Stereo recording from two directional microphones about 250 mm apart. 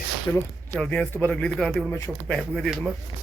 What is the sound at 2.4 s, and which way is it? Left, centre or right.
Speech, centre.